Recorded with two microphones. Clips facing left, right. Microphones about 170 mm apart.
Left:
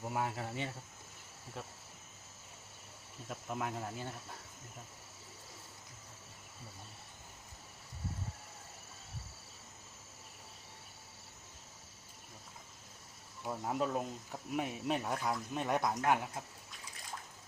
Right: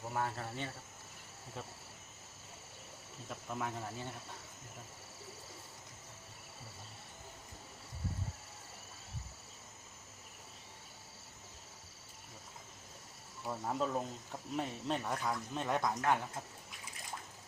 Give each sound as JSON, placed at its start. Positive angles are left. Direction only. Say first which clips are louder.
{"t": 0.1, "sound": "speech", "louder": "even", "side_deg": 15}
{"t": 3.2, "sound": "speech", "louder": "left 1 dB", "side_deg": 5}
{"t": 13.4, "sound": "speech", "louder": "left 1 dB", "side_deg": 5}